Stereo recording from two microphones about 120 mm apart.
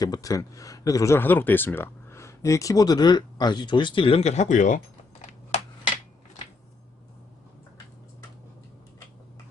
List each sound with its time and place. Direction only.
0.0 s speech: 30° left (ahead or behind); by 4.8 s 90° left